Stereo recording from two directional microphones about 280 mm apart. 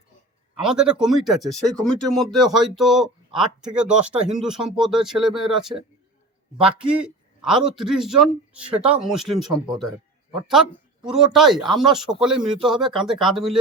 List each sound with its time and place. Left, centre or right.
0.6 s speech: centre
10.5 s speech: centre